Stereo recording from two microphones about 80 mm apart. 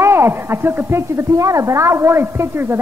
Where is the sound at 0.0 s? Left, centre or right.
Right.